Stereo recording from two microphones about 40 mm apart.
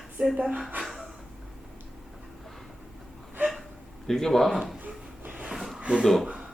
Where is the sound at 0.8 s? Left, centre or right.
Centre.